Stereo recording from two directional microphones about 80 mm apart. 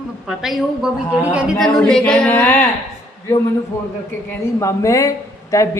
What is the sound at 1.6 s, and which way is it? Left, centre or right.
A capella, centre.